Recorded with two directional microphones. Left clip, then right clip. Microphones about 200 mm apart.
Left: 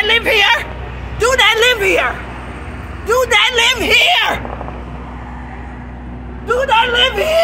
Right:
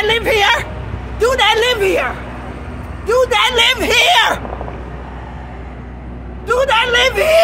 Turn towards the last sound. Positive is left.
turn(degrees=-10)  # may be behind; listen again after turning